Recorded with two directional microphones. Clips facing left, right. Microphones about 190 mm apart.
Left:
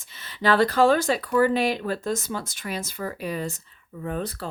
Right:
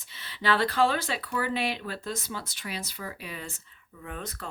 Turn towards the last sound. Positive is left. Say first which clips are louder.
# left 9 dB
turn(degrees=35)  # may be behind; listen again after turning